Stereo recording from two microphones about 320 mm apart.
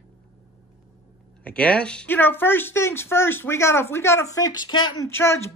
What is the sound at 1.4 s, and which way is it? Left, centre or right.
Speech, centre.